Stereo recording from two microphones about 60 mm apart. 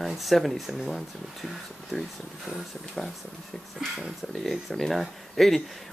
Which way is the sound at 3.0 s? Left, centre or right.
Centre.